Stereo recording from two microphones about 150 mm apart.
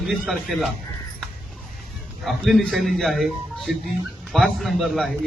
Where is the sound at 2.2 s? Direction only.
Centre (ahead or behind).